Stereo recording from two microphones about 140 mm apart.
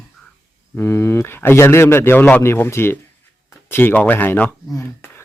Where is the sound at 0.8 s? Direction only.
20° left (ahead or behind).